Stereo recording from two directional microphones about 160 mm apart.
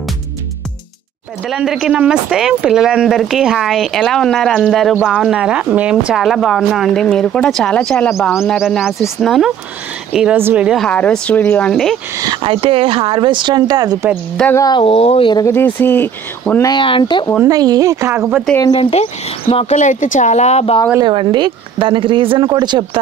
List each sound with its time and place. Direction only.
1.5 s speech: 5° right (ahead or behind)
12.2 s speech: 25° right (ahead or behind)
14.5 s speech: 25° left (ahead or behind)
15.4 s speech: 15° left (ahead or behind)
16.6 s speech: 30° left (ahead or behind)
17.5 s speech: 25° right (ahead or behind)
18.8 s speech: 40° left (ahead or behind)
21.0 s speech: 30° right (ahead or behind)